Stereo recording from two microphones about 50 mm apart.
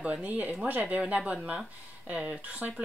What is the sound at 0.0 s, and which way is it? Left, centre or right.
Speech, right.